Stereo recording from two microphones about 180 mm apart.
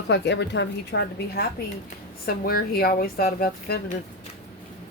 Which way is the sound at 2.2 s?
55° left (ahead or behind).